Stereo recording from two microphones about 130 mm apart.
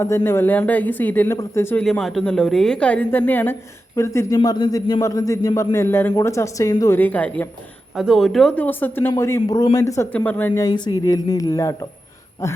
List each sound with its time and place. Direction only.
0.3 s a woman's voice: 15° left (ahead or behind)
1.7 s a woman's voice: 5° left (ahead or behind); by 4.4 s 20° left (ahead or behind)
4.4 s a woman's voice: 35° left (ahead or behind); by 7.4 s 10° left (ahead or behind)
7.9 s a woman's voice: 5° right (ahead or behind); by 9.6 s 25° left (ahead or behind)
10.1 s a woman's voice: 10° left (ahead or behind)
10.6 s a woman's voice: 35° left (ahead or behind)